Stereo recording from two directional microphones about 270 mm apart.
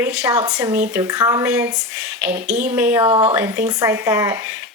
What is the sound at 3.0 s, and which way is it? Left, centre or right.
Speech, centre.